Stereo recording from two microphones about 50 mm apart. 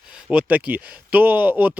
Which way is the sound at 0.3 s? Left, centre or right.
Right.